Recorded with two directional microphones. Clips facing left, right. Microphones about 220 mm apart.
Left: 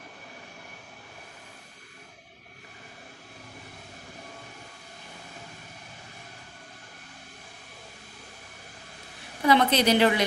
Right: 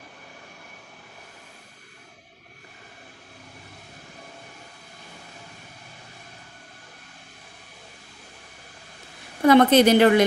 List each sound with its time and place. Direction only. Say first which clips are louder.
9.4 s a woman's voice: right 7 dB; 50° right (ahead or behind)